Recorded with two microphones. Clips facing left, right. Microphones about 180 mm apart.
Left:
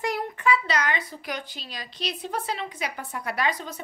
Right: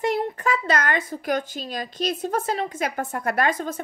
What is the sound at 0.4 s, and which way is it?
A woman's voice, 45° right (ahead or behind).